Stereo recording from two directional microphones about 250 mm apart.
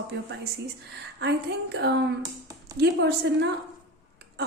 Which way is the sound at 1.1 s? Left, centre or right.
Right.